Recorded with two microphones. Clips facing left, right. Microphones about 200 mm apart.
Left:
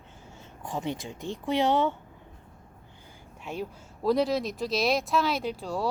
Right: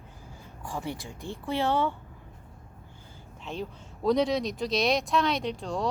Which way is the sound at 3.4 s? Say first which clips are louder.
Left 1 dB; 10° left (ahead or behind).